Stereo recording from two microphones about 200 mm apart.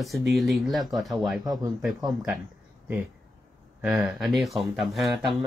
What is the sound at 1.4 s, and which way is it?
Speech, 20° right (ahead or behind).